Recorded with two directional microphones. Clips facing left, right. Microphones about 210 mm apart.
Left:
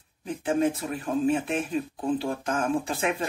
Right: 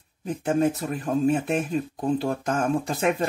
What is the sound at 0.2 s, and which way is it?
Speech, 45° right (ahead or behind).